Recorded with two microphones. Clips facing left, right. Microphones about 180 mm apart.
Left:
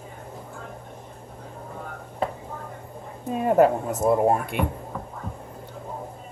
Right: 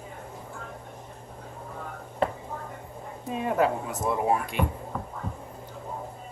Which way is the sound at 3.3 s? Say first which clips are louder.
Left 6 dB; 45° left (ahead or behind).